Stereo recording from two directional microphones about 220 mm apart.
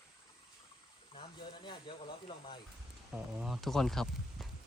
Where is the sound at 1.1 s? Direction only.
20° left (ahead or behind).